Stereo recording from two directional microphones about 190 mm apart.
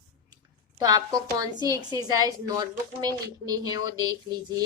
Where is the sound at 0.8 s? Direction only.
20° right (ahead or behind).